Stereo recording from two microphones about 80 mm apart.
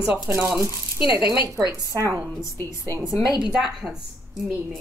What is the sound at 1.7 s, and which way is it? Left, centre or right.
Speech, right.